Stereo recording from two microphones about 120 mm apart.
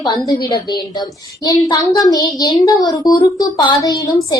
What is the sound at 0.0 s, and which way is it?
A woman's voice, 35° left (ahead or behind).